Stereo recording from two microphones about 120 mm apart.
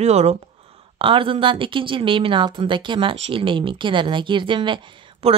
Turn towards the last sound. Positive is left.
turn(degrees=-50)  # may be behind; listen again after turning